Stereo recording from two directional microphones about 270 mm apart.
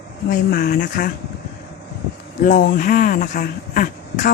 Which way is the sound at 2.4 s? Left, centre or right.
Left.